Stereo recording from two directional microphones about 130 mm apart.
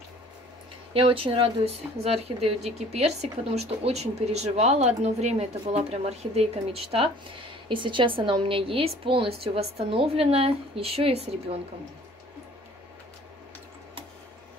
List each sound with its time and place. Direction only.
0.9 s speech: 45° right (ahead or behind)